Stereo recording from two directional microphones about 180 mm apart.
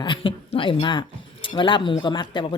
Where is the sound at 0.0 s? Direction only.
30° left (ahead or behind).